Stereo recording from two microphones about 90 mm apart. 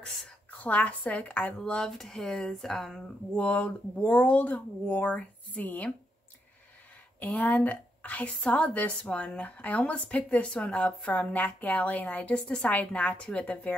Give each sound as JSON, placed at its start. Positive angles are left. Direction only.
{"t": 0.0, "sound": "a sound", "side_deg": 5}
{"t": 0.5, "sound": "a woman's voice", "side_deg": 15}
{"t": 7.2, "sound": "a woman's voice", "side_deg": 20}